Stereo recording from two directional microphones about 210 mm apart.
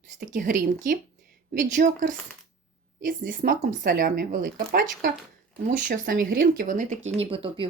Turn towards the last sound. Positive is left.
turn(degrees=-25)  # may be behind; listen again after turning